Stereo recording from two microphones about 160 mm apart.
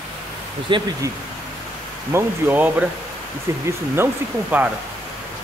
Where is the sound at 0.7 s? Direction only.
30° right (ahead or behind).